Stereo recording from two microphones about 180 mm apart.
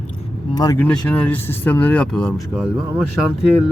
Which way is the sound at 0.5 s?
20° left (ahead or behind).